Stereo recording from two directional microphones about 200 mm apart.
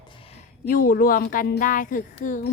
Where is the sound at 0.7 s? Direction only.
45° left (ahead or behind).